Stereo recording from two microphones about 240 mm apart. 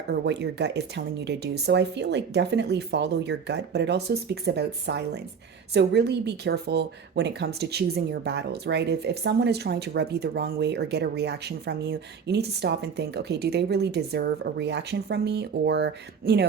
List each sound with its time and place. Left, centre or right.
0.1 s a woman's voice: right